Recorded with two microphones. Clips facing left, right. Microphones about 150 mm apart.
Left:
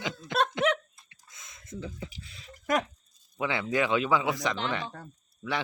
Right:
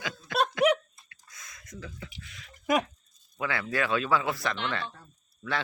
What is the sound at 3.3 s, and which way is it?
Speech, 20° left (ahead or behind).